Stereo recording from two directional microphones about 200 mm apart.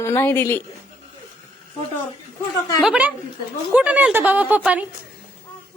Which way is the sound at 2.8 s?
5° right (ahead or behind).